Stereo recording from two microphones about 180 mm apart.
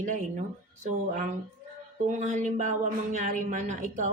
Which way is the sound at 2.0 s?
45° right (ahead or behind).